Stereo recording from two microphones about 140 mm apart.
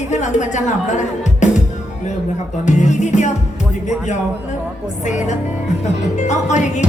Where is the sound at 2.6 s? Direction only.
60° left (ahead or behind).